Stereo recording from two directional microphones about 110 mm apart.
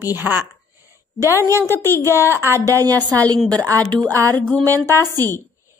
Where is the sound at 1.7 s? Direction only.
20° left (ahead or behind).